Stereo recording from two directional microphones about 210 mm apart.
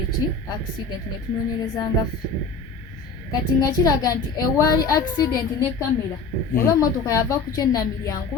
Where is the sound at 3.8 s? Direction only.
15° left (ahead or behind).